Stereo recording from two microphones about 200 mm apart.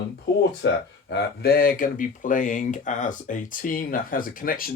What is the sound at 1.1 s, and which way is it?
Speech, 55° left (ahead or behind).